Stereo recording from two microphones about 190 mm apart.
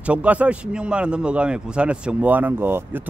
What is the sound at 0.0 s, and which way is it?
A man's voice, 5° right (ahead or behind).